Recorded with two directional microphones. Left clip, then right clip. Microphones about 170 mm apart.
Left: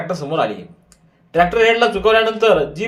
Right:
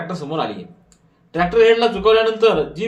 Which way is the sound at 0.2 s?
25° left (ahead or behind).